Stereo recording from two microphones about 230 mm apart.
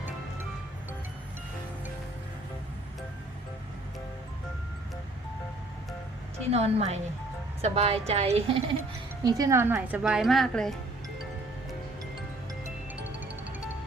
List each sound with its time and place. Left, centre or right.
6.5 s a woman's voice: right
9.2 s speech: centre